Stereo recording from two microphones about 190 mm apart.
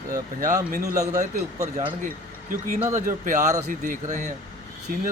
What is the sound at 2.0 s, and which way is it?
Speech, 45° right (ahead or behind).